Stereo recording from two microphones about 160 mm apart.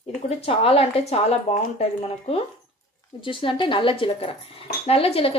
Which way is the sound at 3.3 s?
30° left (ahead or behind).